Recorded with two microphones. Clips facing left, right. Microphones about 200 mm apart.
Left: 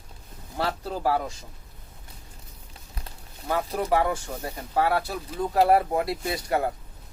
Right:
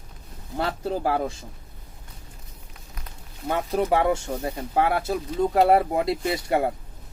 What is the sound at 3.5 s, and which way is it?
Speech, 25° right (ahead or behind).